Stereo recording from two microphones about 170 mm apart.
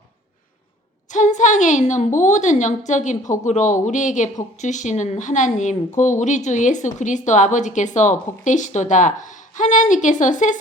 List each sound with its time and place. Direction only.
1.1 s a woman's voice: 45° left (ahead or behind)